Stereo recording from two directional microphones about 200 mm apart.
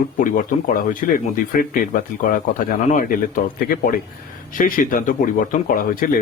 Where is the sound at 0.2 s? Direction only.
40° left (ahead or behind).